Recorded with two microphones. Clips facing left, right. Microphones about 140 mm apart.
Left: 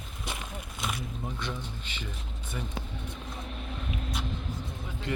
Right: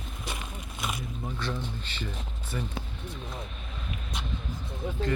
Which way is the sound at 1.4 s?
15° left (ahead or behind).